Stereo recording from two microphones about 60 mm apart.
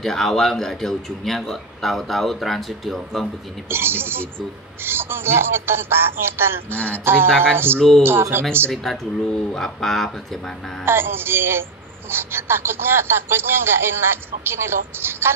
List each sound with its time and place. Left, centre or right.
0.0 s a man's voice: centre
3.6 s speech: right
7.2 s speech: centre
7.5 s speech: right
8.8 s a man's voice: centre
10.9 s speech: right